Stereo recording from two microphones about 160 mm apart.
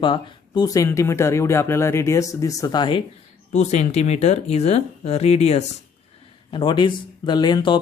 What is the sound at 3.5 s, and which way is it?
Speech, 45° left (ahead or behind).